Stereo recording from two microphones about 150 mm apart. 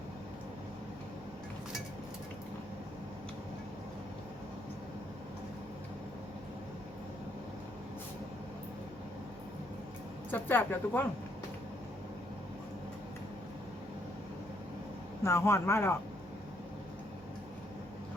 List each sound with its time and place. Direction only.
10.3 s speech: 10° left (ahead or behind)
15.2 s speech: 20° left (ahead or behind)